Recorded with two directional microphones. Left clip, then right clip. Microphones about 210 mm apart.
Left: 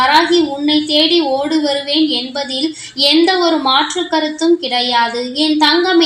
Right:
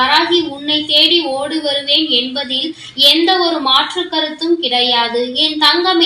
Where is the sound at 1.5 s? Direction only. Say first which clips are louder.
Even; 45° left (ahead or behind).